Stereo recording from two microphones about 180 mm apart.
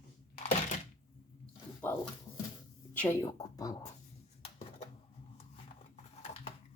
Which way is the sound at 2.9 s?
10° left (ahead or behind).